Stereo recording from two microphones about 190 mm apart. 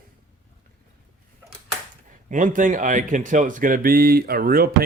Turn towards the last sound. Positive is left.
turn(degrees=-50)  # may be behind; listen again after turning